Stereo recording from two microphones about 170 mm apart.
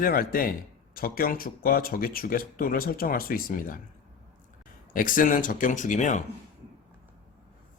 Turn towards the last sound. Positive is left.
turn(degrees=45)  # may be behind; listen again after turning